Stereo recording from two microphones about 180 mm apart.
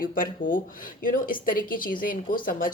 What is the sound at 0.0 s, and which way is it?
Speech, 50° left (ahead or behind).